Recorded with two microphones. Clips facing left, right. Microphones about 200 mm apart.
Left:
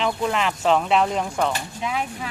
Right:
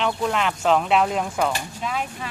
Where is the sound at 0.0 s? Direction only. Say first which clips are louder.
Even; centre (ahead or behind).